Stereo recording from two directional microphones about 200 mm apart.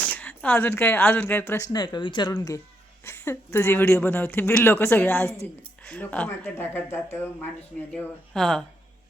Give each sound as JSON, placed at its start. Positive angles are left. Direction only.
{"t": 0.0, "sound": "speech", "side_deg": 5}